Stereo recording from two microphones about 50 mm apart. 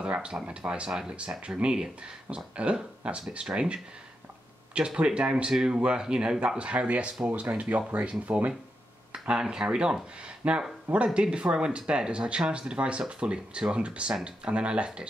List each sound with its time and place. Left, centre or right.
0.0 s speech: right
9.1 s speech: centre